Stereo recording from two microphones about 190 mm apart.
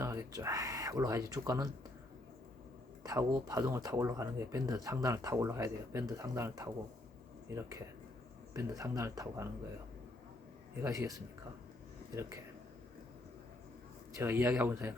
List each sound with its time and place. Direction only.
0.0 s speech: 15° right (ahead or behind)
3.0 s speech: 20° right (ahead or behind)
10.8 s speech: 15° right (ahead or behind)
14.2 s speech: 10° right (ahead or behind)